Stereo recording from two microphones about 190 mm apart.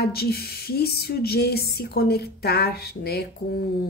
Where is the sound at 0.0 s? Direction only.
55° left (ahead or behind).